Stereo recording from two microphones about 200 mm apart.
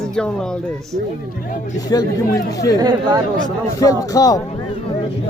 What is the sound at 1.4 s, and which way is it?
Speech, 45° left (ahead or behind).